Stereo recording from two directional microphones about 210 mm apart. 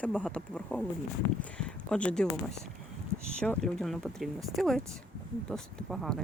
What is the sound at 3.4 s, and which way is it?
Speech, 5° left (ahead or behind).